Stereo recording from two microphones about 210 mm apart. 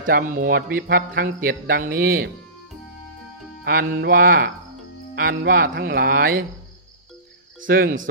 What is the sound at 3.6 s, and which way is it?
Speech, 45° right (ahead or behind).